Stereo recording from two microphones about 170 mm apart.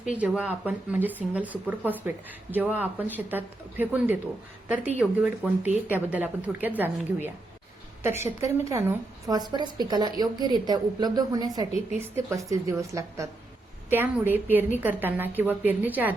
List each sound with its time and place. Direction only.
0.0 s a woman's voice: 10° right (ahead or behind)